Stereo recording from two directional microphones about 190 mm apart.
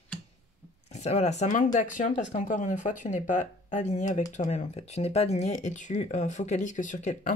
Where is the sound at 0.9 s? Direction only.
35° left (ahead or behind).